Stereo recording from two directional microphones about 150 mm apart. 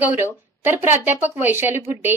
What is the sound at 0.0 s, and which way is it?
A woman's voice, 15° right (ahead or behind).